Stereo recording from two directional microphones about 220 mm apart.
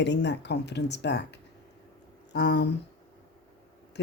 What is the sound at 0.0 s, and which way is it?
Speech, 50° left (ahead or behind).